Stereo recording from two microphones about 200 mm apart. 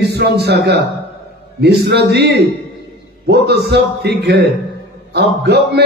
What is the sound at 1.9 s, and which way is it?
A man's voice, 55° right (ahead or behind).